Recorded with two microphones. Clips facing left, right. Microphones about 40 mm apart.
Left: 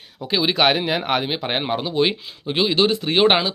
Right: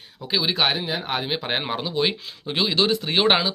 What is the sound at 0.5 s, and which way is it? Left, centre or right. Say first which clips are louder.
Speech: left 5 dB; left.